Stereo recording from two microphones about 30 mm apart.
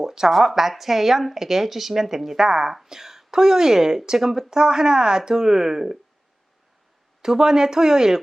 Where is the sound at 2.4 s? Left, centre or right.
Right.